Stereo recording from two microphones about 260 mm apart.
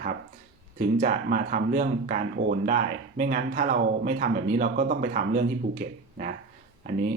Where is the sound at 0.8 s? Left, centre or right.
Right.